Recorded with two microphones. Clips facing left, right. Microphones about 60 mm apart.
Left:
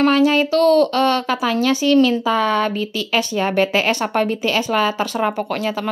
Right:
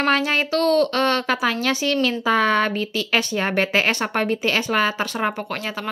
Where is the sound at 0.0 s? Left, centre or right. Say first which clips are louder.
Left 5 dB; right.